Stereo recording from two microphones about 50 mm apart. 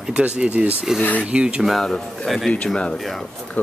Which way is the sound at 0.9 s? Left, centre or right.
Left.